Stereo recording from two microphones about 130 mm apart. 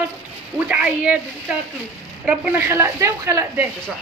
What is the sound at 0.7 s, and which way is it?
Speech, 10° right (ahead or behind).